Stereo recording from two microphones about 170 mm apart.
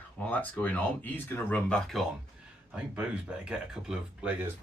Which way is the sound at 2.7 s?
5° right (ahead or behind).